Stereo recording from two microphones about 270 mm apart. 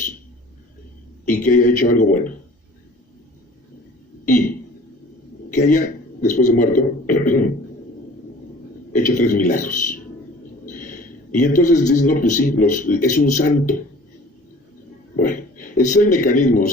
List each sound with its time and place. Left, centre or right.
1.3 s speech: left
5.5 s speech: left
8.9 s a sound: left
11.3 s speech: left
15.1 s a man's voice: left